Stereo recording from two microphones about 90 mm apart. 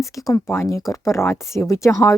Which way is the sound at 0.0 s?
35° left (ahead or behind).